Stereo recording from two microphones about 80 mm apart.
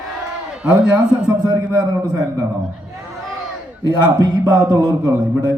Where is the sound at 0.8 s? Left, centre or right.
Centre.